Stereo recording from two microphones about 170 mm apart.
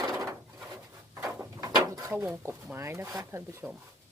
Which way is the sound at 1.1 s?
15° right (ahead or behind).